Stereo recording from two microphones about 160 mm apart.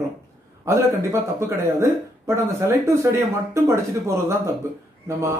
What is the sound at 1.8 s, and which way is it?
Speech, 15° right (ahead or behind).